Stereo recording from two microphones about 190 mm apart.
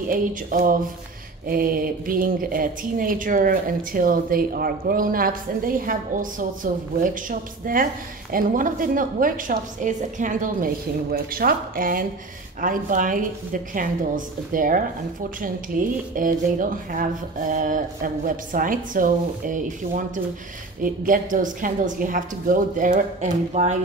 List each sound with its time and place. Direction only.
0.1 s speech: 50° right (ahead or behind)